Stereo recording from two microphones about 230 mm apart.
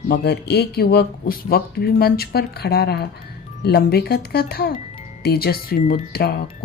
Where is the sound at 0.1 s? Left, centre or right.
Left.